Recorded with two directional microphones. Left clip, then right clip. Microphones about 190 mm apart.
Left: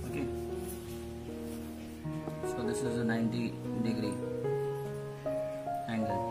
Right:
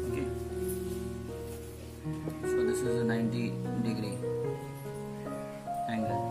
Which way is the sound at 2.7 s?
15° left (ahead or behind).